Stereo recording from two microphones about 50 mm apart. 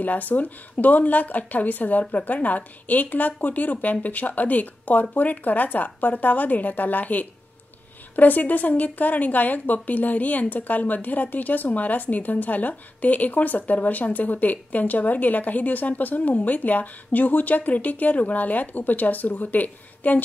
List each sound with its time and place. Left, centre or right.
0.0 s a woman's voice: left